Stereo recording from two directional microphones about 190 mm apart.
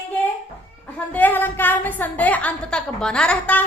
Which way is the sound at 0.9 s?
10° left (ahead or behind).